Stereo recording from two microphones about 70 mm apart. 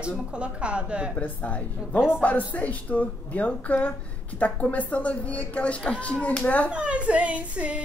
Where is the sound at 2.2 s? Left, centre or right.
Centre.